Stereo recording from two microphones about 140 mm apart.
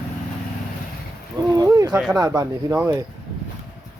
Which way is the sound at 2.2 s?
25° right (ahead or behind).